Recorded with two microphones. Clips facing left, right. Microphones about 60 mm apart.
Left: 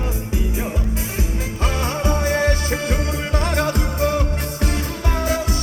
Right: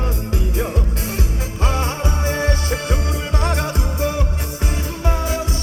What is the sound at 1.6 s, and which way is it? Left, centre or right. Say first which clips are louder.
Music: right 2 dB; right.